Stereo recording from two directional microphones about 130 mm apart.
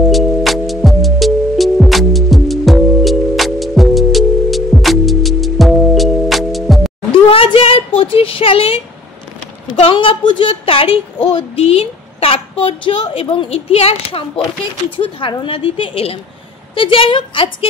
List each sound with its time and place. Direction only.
0.1 s music: centre (ahead or behind)
7.2 s a sound: 45° left (ahead or behind)
8.0 s a woman's voice: 45° left (ahead or behind)